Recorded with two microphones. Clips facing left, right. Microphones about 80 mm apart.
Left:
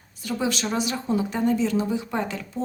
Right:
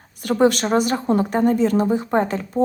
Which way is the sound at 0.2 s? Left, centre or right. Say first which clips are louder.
Right 9 dB; right.